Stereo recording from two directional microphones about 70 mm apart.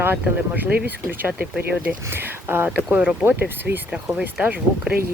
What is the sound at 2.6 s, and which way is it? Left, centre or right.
Speech, right.